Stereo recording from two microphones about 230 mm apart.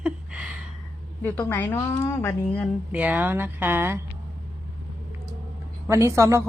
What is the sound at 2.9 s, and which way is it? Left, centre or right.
Speech, centre.